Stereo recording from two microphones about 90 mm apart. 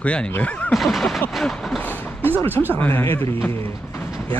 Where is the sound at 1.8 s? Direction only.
20° left (ahead or behind).